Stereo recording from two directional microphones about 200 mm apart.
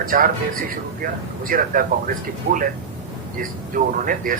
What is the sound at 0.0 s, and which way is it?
A man's voice, 45° right (ahead or behind).